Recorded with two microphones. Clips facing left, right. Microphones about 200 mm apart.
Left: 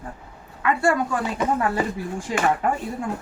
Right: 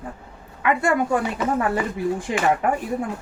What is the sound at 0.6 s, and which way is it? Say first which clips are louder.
Speech: even; 20° right (ahead or behind).